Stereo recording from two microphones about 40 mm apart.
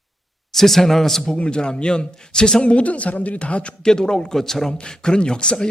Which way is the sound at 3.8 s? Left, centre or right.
Centre.